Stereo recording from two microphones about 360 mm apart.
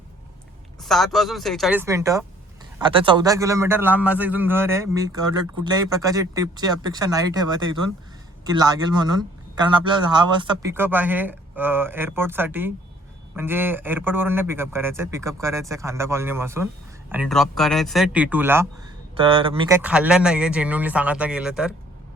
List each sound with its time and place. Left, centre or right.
0.8 s a man's voice: centre